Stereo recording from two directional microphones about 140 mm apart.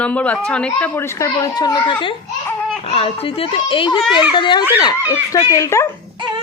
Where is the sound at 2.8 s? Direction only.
45° left (ahead or behind).